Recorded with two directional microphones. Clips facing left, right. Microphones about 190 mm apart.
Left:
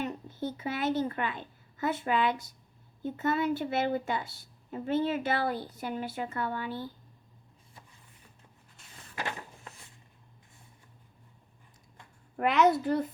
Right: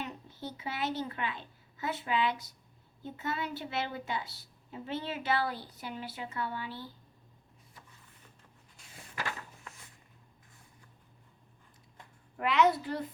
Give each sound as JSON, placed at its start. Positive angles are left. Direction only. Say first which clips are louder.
{"t": 0.0, "sound": "a woman's voice", "louder": "left 7 dB", "side_deg": 50}
{"t": 9.1, "sound": "a sound", "louder": "left 2 dB", "side_deg": 25}
{"t": 12.4, "sound": "a woman's voice", "louder": "left 3 dB", "side_deg": 50}